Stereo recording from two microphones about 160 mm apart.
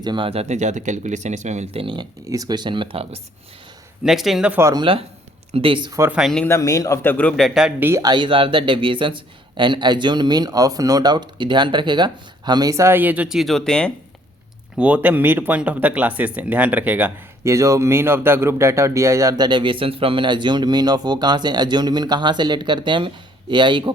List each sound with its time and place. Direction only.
0.0 s speech: 30° right (ahead or behind)
2.2 s speech: 20° right (ahead or behind)
4.0 s speech: centre (ahead or behind)
4.6 s speech: 25° right (ahead or behind)
6.0 s speech: 5° right (ahead or behind)
6.4 s a man's voice: 20° left (ahead or behind); by 7.9 s centre (ahead or behind)
7.9 s speech: 20° right (ahead or behind); by 13.9 s 5° left (ahead or behind)
14.8 s speech: 10° right (ahead or behind); by 23.9 s 30° right (ahead or behind)